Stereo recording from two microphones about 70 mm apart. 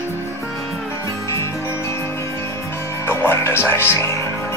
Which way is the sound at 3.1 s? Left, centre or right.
Left.